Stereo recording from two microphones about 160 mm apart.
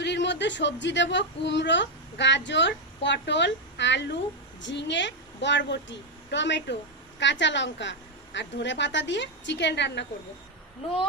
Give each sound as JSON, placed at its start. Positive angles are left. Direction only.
{"t": 0.0, "sound": "speech", "side_deg": 90}